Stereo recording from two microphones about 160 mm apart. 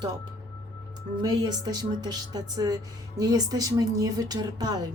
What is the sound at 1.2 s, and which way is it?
Speech, 25° right (ahead or behind).